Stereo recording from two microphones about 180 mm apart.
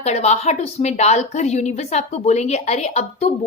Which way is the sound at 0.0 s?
40° left (ahead or behind).